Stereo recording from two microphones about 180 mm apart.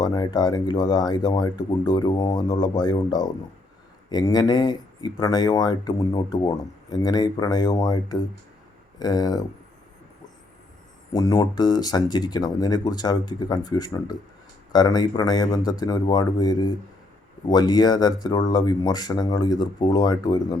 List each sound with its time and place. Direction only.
0.0 s speech: 20° left (ahead or behind)
11.1 s speech: 20° left (ahead or behind)